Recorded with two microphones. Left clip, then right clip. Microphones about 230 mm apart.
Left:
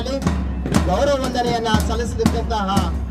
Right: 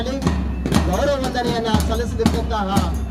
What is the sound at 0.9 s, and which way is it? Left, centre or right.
Music, left.